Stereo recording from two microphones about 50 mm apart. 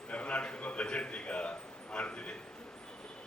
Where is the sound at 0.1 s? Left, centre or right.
Left.